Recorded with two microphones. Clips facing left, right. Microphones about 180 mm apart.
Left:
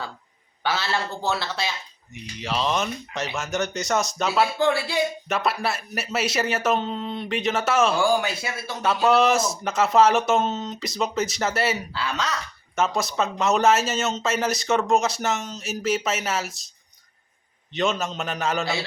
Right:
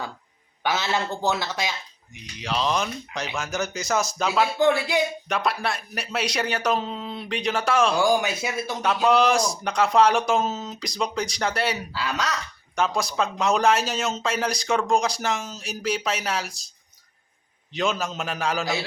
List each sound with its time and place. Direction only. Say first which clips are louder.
0.6 s a man's voice: right 1 dB; 15° right (ahead or behind)
2.1 s speech: even; centre (ahead or behind)
4.6 s a man's voice: right 2 dB; 15° right (ahead or behind)
5.3 s speech: left 1 dB; 5° left (ahead or behind)
8.2 s a man's voice: right 2 dB; 15° right (ahead or behind)
8.8 s speech: left 1 dB; 5° left (ahead or behind)
11.9 s a man's voice: even; 10° right (ahead or behind)
12.7 s speech: left 1 dB; centre (ahead or behind)
17.7 s speech: left 1 dB; centre (ahead or behind)